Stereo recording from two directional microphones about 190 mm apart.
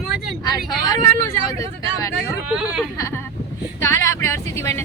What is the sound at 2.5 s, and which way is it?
Speech, 5° right (ahead or behind).